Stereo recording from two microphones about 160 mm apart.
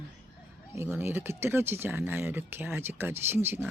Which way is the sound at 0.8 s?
15° right (ahead or behind).